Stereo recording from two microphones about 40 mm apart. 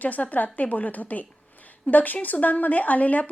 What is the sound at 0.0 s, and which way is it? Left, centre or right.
Speech, left.